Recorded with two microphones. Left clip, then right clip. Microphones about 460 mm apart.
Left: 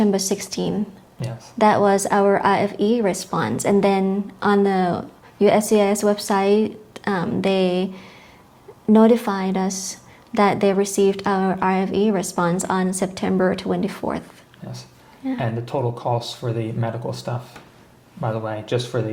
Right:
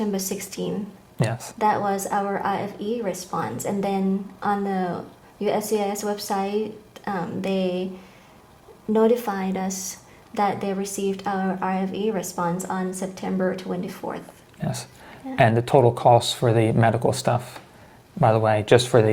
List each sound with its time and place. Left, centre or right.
0.0 s a woman's voice: left
8.9 s a woman's voice: left
15.4 s speech: right